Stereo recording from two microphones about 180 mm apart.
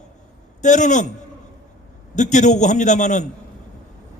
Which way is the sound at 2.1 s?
40° left (ahead or behind).